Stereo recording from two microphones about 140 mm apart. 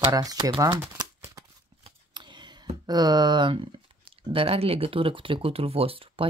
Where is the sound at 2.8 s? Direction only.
30° right (ahead or behind).